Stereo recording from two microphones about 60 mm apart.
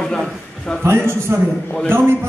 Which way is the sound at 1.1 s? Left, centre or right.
Right.